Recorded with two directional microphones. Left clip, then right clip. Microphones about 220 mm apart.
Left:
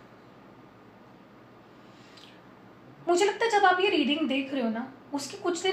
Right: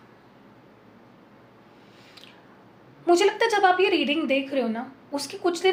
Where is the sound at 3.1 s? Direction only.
50° right (ahead or behind).